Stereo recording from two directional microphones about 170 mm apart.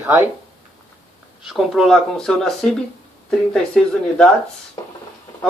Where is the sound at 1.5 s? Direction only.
Centre (ahead or behind).